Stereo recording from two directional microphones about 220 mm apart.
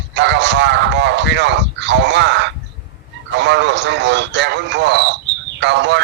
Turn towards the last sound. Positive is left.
turn(degrees=-55)  # may be behind; listen again after turning